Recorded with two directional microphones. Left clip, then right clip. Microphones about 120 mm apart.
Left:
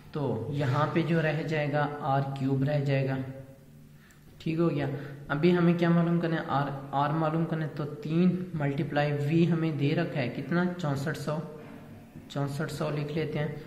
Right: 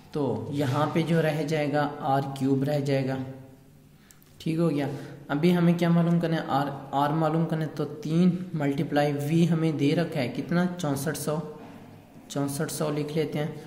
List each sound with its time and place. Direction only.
0.1 s a woman's voice: 40° right (ahead or behind)
4.5 s a woman's voice: 40° right (ahead or behind)